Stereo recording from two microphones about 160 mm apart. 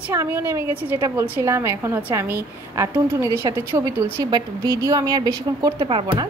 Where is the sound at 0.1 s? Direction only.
20° right (ahead or behind).